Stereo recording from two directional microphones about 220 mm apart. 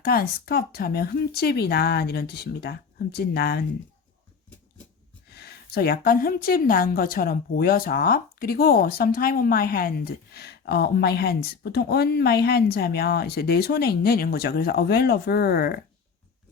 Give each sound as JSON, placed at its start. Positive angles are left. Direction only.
{"t": 0.0, "sound": "a woman's voice", "side_deg": 45}
{"t": 5.3, "sound": "a woman's voice", "side_deg": 45}